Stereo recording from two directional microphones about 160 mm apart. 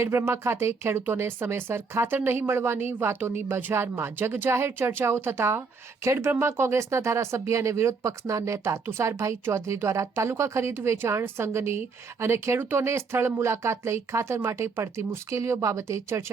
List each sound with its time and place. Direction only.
0.0 s speech: 15° right (ahead or behind)